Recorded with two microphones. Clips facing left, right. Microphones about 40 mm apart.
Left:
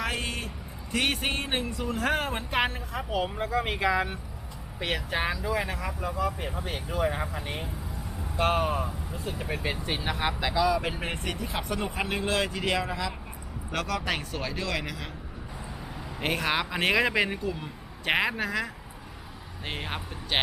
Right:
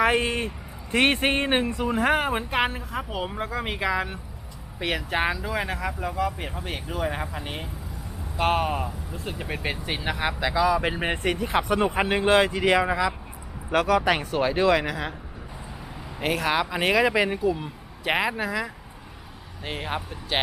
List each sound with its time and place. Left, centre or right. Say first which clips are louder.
0.0 s speech: right 9 dB; right
1.8 s speech: right 5 dB; centre
10.0 s speech: right 4 dB; centre
11.0 s speech: right 7 dB; right
13.7 s speech: right 9 dB; centre
16.2 s speech: right 4 dB; centre